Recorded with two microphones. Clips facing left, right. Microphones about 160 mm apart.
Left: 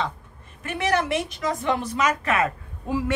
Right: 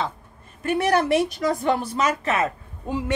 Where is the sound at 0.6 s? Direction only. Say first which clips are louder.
Right 4 dB; 35° right (ahead or behind).